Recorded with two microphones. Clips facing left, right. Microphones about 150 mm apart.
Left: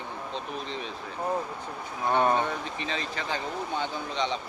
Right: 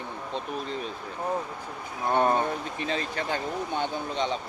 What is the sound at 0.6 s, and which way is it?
Speech, 45° right (ahead or behind).